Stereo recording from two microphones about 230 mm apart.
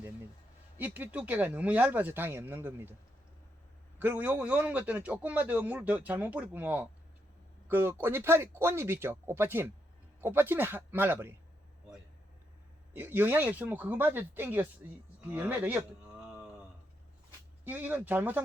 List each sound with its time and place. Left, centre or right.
0.8 s a man's voice: centre
3.9 s a man's voice: centre
12.9 s a man's voice: centre
17.7 s a man's voice: centre